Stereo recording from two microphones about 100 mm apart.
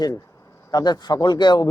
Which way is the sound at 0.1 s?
30° left (ahead or behind).